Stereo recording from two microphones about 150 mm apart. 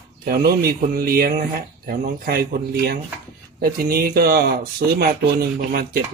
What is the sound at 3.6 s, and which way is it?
Speech, 75° right (ahead or behind).